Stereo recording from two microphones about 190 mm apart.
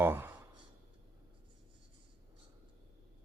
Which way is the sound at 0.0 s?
10° right (ahead or behind).